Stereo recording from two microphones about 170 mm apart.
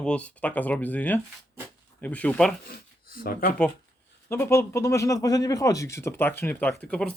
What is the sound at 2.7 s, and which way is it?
Speech, 60° left (ahead or behind).